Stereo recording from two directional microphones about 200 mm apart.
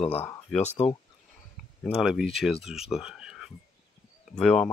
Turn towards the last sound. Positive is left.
turn(degrees=5)  # may be behind; listen again after turning